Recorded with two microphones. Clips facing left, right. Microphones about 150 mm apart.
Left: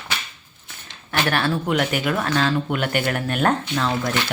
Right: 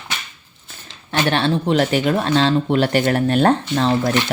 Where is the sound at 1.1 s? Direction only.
25° right (ahead or behind).